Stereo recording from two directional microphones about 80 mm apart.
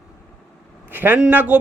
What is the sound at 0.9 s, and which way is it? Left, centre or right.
Speech, right.